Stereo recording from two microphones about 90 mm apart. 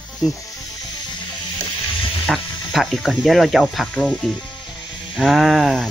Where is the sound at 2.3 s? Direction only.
5° left (ahead or behind).